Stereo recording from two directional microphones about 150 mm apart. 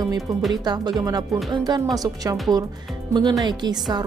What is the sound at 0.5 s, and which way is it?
Speech, 25° right (ahead or behind).